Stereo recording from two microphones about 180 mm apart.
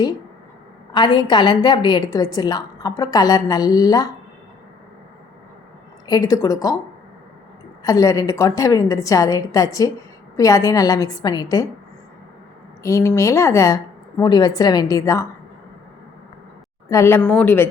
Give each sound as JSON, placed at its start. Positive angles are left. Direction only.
{"t": 0.9, "sound": "a woman's voice", "side_deg": 25}
{"t": 6.1, "sound": "a woman's voice", "side_deg": 20}
{"t": 7.9, "sound": "a woman's voice", "side_deg": 20}
{"t": 12.8, "sound": "a woman's voice", "side_deg": 15}
{"t": 16.9, "sound": "a woman's voice", "side_deg": 15}